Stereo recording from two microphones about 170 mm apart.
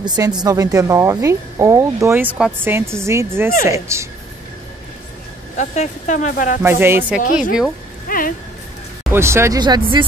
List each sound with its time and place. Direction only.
0.0 s speech: 25° right (ahead or behind)
5.6 s speech: 45° left (ahead or behind)
6.6 s speech: 15° right (ahead or behind)
8.1 s speech: 55° left (ahead or behind)
9.1 s speech: 15° right (ahead or behind)